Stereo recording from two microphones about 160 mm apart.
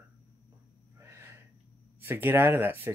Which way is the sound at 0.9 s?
15° right (ahead or behind).